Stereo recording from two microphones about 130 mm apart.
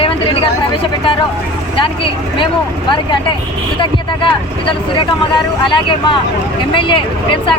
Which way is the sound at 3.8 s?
40° left (ahead or behind).